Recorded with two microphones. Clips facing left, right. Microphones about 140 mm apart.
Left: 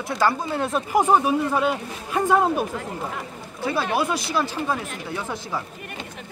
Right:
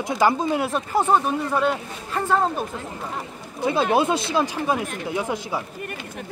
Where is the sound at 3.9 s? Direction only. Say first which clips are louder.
Right 3 dB; 25° right (ahead or behind).